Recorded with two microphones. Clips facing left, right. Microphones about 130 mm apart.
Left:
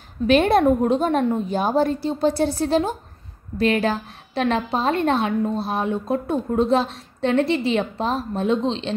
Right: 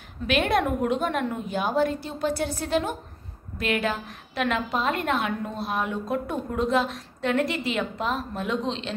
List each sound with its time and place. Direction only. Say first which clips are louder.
0.3 s a woman's voice: left 7 dB; 35° left (ahead or behind)